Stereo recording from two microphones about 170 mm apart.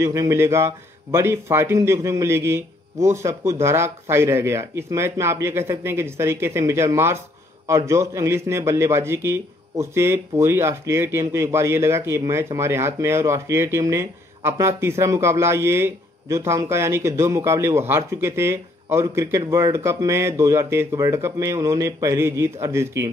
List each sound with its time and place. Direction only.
0.0 s a man's voice: 15° right (ahead or behind)